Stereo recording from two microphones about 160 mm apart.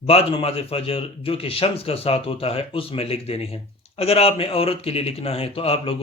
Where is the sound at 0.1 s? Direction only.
35° left (ahead or behind).